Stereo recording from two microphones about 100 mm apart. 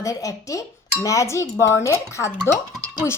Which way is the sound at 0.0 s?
35° left (ahead or behind).